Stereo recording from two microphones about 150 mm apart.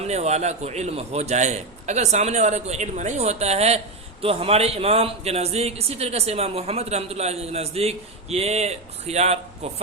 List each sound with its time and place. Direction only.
0.0 s a man's voice: 45° right (ahead or behind)